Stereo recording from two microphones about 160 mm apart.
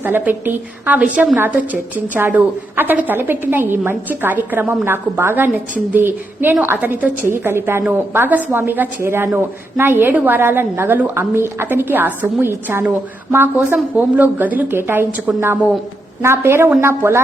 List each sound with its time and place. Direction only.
0.0 s a woman's voice: 10° right (ahead or behind)